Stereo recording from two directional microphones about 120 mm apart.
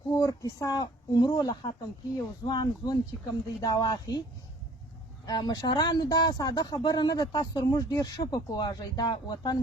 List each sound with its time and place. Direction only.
0.1 s speech: 30° left (ahead or behind)
5.2 s speech: 35° left (ahead or behind)